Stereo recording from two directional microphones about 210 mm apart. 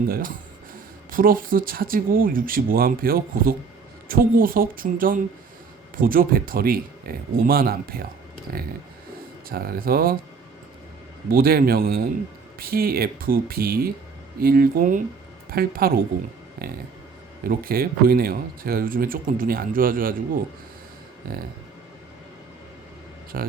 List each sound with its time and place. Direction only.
0.1 s speech: 40° right (ahead or behind)
9.5 s speech: 45° right (ahead or behind)
11.3 s a woman's voice: 45° right (ahead or behind)
17.4 s speech: 45° right (ahead or behind)
23.3 s speech: 45° right (ahead or behind)